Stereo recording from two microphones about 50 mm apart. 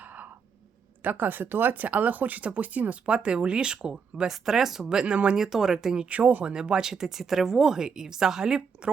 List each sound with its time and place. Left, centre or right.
0.0 s frog: right
1.0 s speech: right; by 4.3 s centre
4.3 s speech: centre
4.9 s speech: centre
5.4 s speech: centre
6.1 s speech: right